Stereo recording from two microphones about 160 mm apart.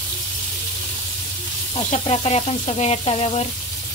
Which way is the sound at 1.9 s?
40° left (ahead or behind).